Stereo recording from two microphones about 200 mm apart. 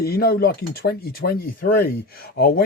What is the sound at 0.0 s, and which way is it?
Speech, 50° left (ahead or behind).